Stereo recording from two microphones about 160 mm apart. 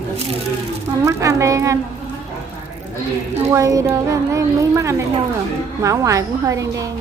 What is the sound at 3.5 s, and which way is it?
A woman's voice, 20° right (ahead or behind).